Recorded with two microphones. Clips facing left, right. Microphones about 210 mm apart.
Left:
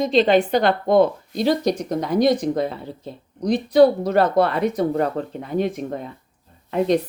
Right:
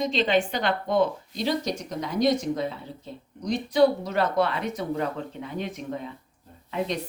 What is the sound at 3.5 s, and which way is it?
Speech, 35° left (ahead or behind).